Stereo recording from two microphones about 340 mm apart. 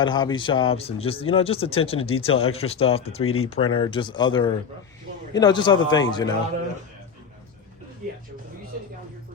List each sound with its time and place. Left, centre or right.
0.0 s speech: centre
3.2 s speech: left
3.5 s speech: centre